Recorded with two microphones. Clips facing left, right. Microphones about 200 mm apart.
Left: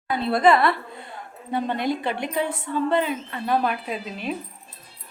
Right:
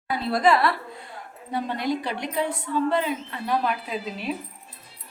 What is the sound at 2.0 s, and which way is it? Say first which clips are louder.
Speech: left 3 dB; 55° left (ahead or behind).